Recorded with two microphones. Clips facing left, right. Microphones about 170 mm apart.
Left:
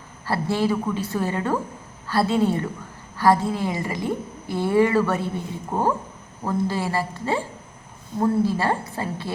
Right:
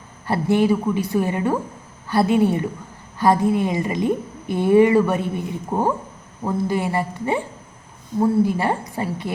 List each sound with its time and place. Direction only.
0.3 s a woman's voice: 15° right (ahead or behind)